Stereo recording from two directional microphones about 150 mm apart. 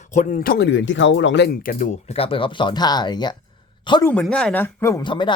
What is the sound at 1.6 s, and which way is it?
Speech, 65° left (ahead or behind).